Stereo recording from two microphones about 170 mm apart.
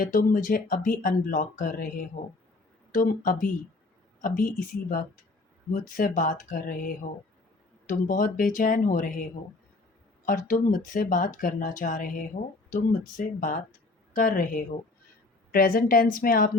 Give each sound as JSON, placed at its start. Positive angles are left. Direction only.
{"t": 0.0, "sound": "speech", "side_deg": 55}
{"t": 10.2, "sound": "a woman's voice", "side_deg": 50}